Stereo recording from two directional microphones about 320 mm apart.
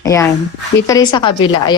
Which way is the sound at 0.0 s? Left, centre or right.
Centre.